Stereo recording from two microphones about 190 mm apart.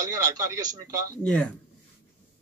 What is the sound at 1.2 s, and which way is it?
Speech, 5° left (ahead or behind).